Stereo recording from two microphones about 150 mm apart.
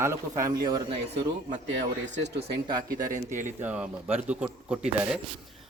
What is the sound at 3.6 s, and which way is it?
Speech, 10° right (ahead or behind).